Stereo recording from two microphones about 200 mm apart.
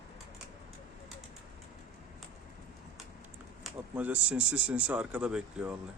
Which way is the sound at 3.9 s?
10° right (ahead or behind).